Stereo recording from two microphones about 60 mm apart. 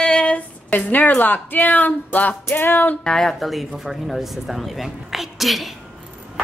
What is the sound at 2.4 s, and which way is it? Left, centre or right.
Music, left.